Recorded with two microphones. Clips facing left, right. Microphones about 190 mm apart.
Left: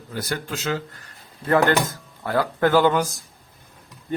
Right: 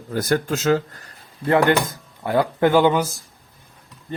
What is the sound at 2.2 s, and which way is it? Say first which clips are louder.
Speech: right 3 dB; 20° right (ahead or behind).